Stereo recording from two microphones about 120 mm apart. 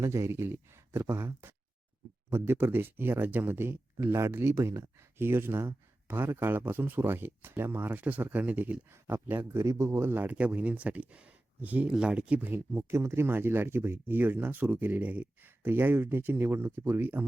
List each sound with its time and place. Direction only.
0.0 s speech: 25° right (ahead or behind)